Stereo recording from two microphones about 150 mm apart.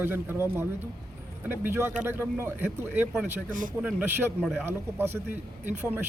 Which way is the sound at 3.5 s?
60° right (ahead or behind).